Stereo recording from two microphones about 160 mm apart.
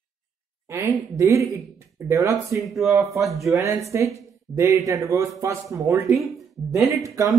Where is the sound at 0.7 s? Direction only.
15° right (ahead or behind).